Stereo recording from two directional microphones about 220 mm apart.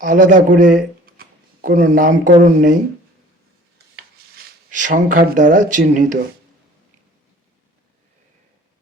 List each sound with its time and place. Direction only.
0.0 s speech: 35° right (ahead or behind)
3.9 s speech: 40° right (ahead or behind)